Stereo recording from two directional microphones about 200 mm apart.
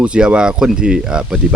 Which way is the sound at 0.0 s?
5° right (ahead or behind).